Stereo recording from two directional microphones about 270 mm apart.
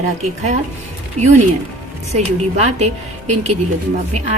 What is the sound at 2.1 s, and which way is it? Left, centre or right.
Speech, right.